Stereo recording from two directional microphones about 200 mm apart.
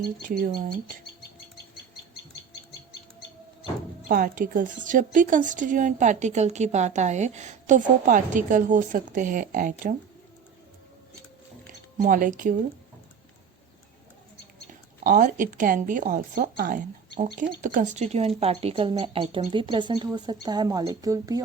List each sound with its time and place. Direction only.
0.3 s speech: 45° right (ahead or behind)
4.1 s a woman's voice: 45° right (ahead or behind)
12.0 s a woman's voice: 40° right (ahead or behind)
14.7 s speech: 45° right (ahead or behind); by 21.4 s 20° right (ahead or behind)